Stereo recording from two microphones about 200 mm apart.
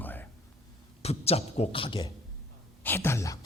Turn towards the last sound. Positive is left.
turn(degrees=15)  # may be behind; listen again after turning